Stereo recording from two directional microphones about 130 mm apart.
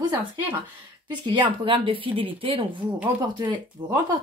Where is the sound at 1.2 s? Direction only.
40° right (ahead or behind).